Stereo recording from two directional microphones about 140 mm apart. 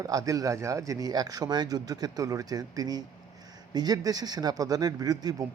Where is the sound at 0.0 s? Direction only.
25° right (ahead or behind).